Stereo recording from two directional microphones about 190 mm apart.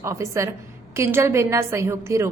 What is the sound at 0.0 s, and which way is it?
A woman's voice, 15° right (ahead or behind).